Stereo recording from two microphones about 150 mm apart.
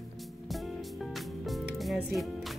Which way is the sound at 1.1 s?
Centre (ahead or behind).